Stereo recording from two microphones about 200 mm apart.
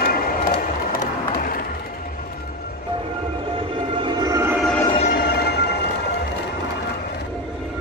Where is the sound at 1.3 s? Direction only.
45° left (ahead or behind).